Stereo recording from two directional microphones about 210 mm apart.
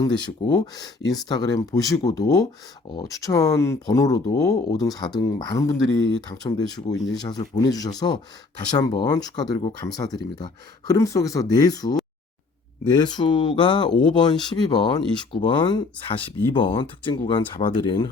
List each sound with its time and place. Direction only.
0.0 s speech: 20° left (ahead or behind)
13.0 s speech: 20° left (ahead or behind)